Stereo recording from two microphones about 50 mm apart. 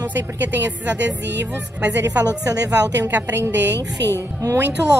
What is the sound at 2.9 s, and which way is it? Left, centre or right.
Speech, right.